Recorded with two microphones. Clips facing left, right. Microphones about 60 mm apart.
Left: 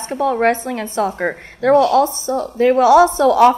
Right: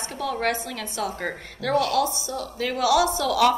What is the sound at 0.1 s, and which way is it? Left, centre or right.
A woman's voice, left.